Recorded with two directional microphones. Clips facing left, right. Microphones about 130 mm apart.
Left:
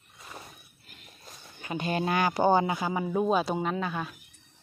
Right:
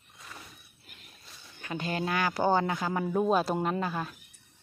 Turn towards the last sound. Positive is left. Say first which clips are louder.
# even
turn(degrees=0)  # may be behind; listen again after turning